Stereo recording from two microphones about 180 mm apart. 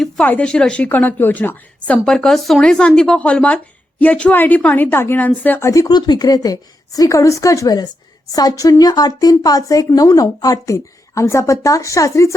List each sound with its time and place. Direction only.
0.0 s a woman's voice: 5° left (ahead or behind)